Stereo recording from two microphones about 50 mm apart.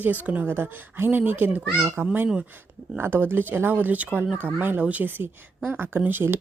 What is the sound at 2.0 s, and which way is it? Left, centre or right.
Speech, right.